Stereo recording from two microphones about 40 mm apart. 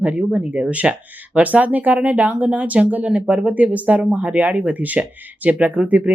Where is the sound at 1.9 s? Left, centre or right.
Right.